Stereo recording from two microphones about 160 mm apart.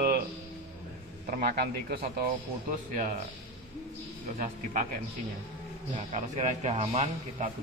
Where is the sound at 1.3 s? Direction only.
65° right (ahead or behind); by 2.1 s 90° right.